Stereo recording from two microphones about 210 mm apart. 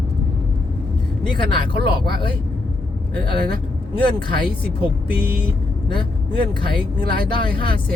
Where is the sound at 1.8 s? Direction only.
50° right (ahead or behind).